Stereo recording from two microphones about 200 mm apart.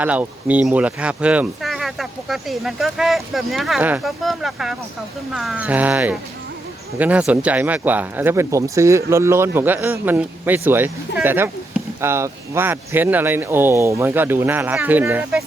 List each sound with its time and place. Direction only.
0.0 s speech: 10° right (ahead or behind)